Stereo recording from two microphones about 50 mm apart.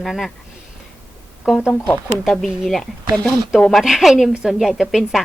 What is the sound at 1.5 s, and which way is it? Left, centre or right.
Speech, centre.